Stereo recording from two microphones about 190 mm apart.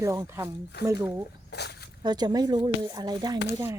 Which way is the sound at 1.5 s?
60° left (ahead or behind).